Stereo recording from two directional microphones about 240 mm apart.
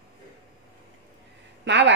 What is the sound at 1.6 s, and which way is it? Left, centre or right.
Speech, right.